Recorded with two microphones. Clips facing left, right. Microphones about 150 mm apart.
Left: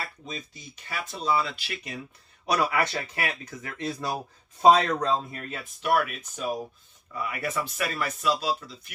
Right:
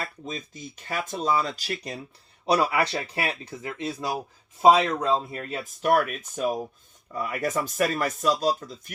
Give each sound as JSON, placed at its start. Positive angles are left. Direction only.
{"t": 0.3, "sound": "speech", "side_deg": -45}
{"t": 4.6, "sound": "speech", "side_deg": -10}
{"t": 5.1, "sound": "speech", "side_deg": -25}
{"t": 5.8, "sound": "speech", "side_deg": -45}